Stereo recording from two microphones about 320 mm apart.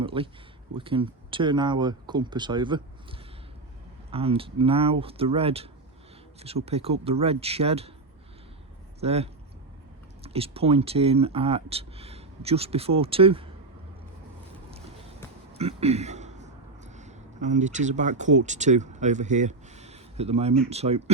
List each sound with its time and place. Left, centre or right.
0.0 s speech: centre
6.7 s speech: centre
9.0 s speech: centre
14.7 s a sound: centre
15.5 s speech: centre